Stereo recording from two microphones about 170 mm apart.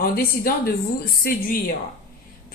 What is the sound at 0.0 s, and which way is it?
Speech, 60° left (ahead or behind).